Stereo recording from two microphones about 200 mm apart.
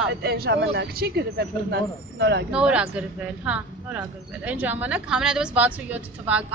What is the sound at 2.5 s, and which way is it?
Speech, 5° right (ahead or behind).